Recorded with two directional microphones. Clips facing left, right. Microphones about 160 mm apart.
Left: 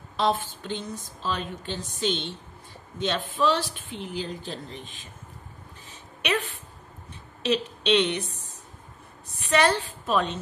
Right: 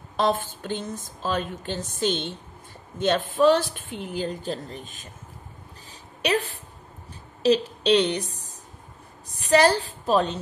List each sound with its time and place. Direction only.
0.2 s a woman's voice: 45° right (ahead or behind)
5.9 s a sound: 35° right (ahead or behind)
7.4 s a woman's voice: 35° right (ahead or behind)